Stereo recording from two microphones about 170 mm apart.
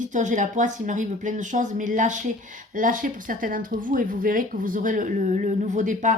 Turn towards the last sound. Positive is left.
turn(degrees=-45)  # may be behind; listen again after turning